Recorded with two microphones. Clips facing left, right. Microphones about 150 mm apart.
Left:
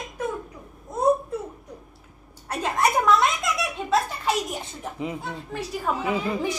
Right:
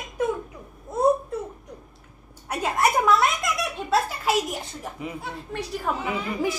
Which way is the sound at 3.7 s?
Centre (ahead or behind).